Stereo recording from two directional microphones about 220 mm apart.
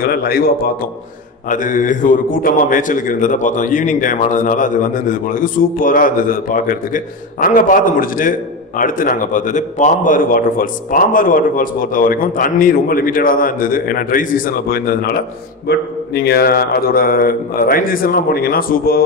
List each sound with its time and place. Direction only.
0.0 s speech: 40° left (ahead or behind)
1.5 s a man's voice: 35° left (ahead or behind)